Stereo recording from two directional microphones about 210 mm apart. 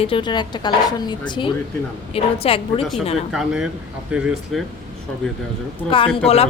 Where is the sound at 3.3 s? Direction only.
Centre (ahead or behind).